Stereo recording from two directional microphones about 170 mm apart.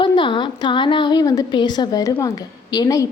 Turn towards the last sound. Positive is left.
turn(degrees=20)  # may be behind; listen again after turning